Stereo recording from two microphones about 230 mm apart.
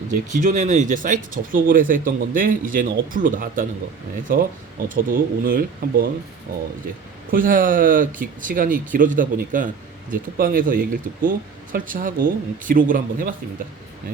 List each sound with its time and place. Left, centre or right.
0.1 s speech: right